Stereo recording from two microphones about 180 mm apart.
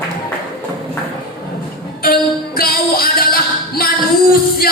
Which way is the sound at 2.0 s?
55° left (ahead or behind).